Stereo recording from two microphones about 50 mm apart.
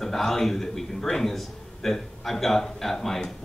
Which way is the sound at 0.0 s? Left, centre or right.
Centre.